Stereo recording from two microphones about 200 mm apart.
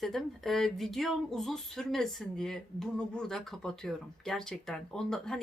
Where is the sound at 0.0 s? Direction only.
Centre (ahead or behind).